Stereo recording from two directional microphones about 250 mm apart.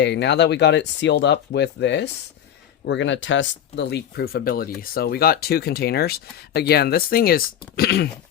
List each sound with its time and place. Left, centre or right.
0.0 s speech: left